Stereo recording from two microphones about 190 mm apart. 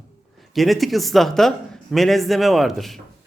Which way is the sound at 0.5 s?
Centre (ahead or behind).